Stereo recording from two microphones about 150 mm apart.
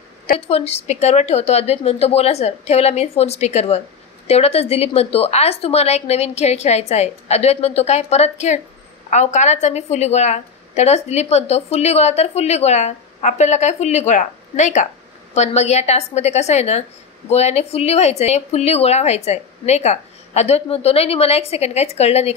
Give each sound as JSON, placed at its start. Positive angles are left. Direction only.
{"t": 0.5, "sound": "a woman's voice", "side_deg": 45}